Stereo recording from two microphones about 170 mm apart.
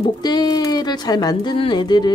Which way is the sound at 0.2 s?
25° left (ahead or behind).